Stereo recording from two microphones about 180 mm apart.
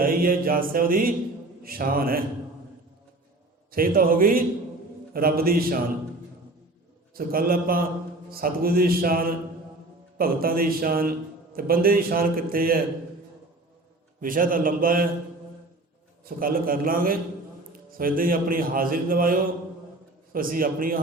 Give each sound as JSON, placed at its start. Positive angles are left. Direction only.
{"t": 0.0, "sound": "a man's voice", "side_deg": -50}
{"t": 3.7, "sound": "a man's voice", "side_deg": -55}
{"t": 7.2, "sound": "a man's voice", "side_deg": -55}
{"t": 14.2, "sound": "a man's voice", "side_deg": -50}
{"t": 16.2, "sound": "a man's voice", "side_deg": -55}